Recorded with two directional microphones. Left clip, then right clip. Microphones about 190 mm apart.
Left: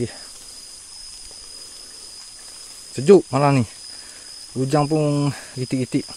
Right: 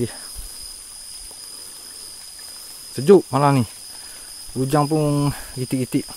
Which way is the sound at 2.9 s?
10° left (ahead or behind).